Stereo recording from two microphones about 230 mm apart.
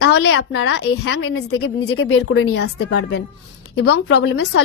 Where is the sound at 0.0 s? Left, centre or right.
Left.